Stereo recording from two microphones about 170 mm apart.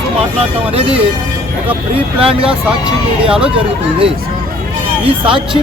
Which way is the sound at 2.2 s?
35° right (ahead or behind).